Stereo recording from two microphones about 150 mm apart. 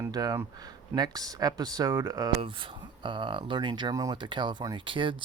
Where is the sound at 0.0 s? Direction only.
25° right (ahead or behind).